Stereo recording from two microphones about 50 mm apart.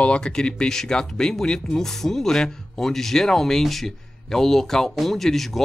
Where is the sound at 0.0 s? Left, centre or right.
Centre.